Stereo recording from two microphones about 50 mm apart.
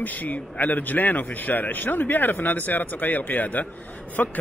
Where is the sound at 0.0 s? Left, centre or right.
Left.